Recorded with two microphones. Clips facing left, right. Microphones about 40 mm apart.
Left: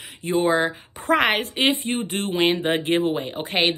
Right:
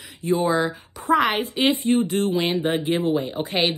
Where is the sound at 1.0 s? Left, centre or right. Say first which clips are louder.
Even; left.